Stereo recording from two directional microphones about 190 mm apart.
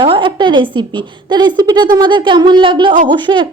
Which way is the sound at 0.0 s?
25° right (ahead or behind).